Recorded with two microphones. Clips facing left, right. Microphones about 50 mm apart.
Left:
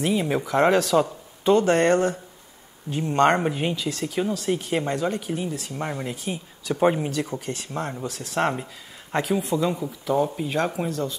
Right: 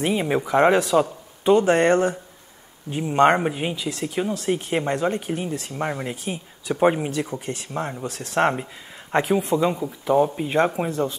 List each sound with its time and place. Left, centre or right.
0.0 s speech: right
5.8 s speech: centre
7.3 s speech: right
8.1 s speech: right
8.4 s speech: right